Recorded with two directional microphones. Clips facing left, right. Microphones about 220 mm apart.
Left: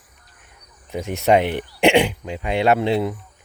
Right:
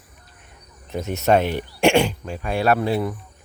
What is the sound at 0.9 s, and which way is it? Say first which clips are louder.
Speech: left 1 dB; 15° left (ahead or behind).